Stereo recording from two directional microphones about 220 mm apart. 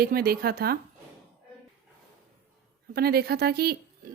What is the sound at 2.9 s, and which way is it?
A woman's voice, 45° right (ahead or behind).